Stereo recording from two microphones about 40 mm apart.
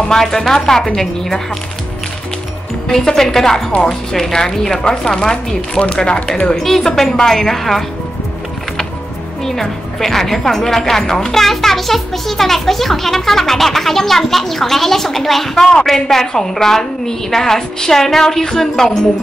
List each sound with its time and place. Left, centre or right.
0.1 s speech: centre
2.9 s speech: centre; by 6.5 s left
6.5 s speech: centre
9.4 s speech: centre